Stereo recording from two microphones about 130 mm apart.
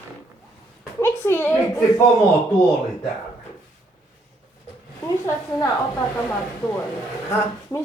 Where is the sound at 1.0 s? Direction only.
20° left (ahead or behind).